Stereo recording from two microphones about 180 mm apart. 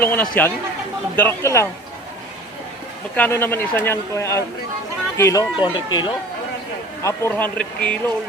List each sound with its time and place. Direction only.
0.0 s speech: 10° left (ahead or behind)
3.2 s speech: 10° left (ahead or behind)
7.0 s speech: 15° left (ahead or behind)